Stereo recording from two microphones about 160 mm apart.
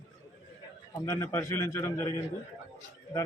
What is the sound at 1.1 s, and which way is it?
Speech, 15° left (ahead or behind).